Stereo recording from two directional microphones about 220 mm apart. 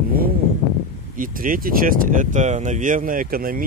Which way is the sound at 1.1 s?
40° right (ahead or behind).